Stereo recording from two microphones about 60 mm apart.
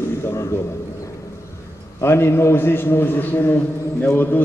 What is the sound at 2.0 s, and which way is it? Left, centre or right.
A man's voice, left.